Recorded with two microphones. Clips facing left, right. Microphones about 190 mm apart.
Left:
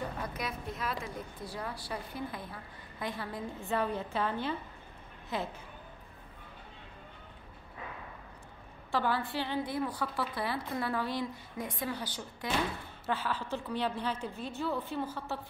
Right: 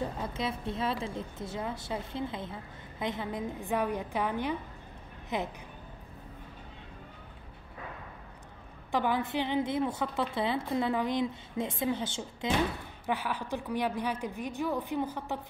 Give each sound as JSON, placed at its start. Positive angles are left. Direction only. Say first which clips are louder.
{"t": 0.2, "sound": "a woman's voice", "louder": "right 4 dB", "side_deg": -25}
{"t": 8.9, "sound": "a woman's voice", "louder": "right 3 dB", "side_deg": -15}